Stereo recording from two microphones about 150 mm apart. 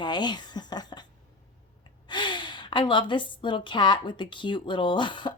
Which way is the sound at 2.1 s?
30° left (ahead or behind).